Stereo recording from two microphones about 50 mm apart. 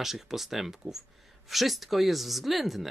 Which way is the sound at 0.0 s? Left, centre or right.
Centre.